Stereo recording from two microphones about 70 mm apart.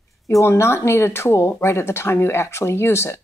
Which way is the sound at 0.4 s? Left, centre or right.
Left.